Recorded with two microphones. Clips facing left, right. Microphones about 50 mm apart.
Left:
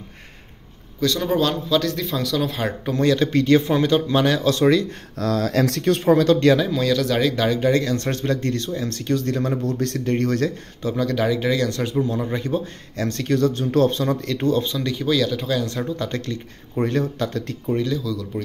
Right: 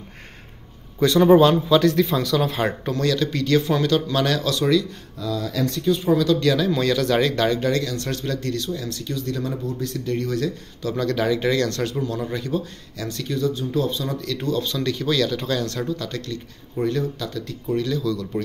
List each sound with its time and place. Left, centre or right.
1.0 s a man's voice: centre
2.9 s speech: left
4.5 s speech: left
5.2 s speech: left
6.7 s a man's voice: centre
7.7 s speech: left
9.7 s speech: left
11.0 s speech: centre; by 14.3 s left
14.3 s speech: left
14.7 s speech: centre
16.0 s speech: left
17.6 s speech: centre